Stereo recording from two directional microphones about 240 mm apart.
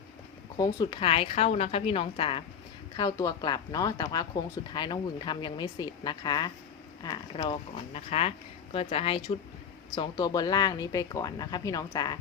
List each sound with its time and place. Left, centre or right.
0.5 s a woman's voice: centre